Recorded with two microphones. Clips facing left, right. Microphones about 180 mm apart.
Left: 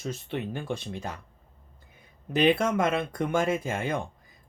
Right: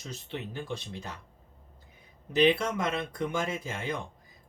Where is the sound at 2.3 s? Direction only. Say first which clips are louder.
Left 2 dB; 50° left (ahead or behind).